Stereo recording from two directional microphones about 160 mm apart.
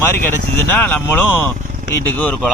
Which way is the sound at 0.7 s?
10° left (ahead or behind).